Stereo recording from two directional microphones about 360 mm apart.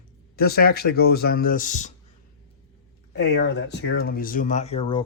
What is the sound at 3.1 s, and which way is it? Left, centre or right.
Speech, left.